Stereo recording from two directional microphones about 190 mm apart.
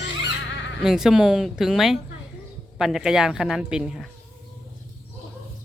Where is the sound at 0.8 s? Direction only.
Centre (ahead or behind).